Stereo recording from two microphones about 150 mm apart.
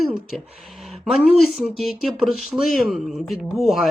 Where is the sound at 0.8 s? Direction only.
Centre (ahead or behind).